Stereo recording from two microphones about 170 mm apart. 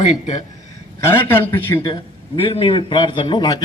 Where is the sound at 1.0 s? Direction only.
15° left (ahead or behind).